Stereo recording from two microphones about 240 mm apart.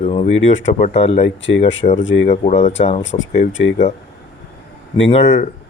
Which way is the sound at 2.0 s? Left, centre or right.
Left.